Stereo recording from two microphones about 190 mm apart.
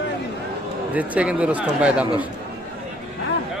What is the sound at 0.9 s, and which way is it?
Speech, 5° right (ahead or behind).